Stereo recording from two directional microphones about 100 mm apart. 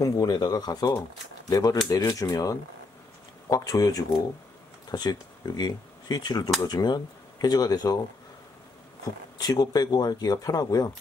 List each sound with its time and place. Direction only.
0.0 s speech: 40° left (ahead or behind)
9.4 s speech: 40° left (ahead or behind)